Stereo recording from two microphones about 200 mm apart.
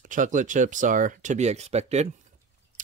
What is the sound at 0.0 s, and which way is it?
Speech, 40° right (ahead or behind).